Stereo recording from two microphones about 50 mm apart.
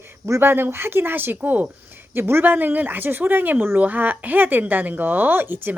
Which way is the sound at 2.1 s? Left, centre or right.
Right.